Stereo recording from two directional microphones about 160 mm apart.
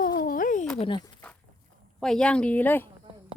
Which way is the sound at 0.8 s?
30° left (ahead or behind).